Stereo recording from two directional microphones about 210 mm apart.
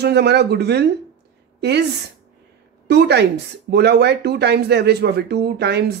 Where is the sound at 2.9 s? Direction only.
50° right (ahead or behind).